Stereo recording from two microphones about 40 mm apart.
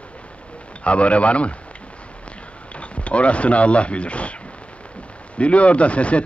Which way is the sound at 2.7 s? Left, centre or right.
Left.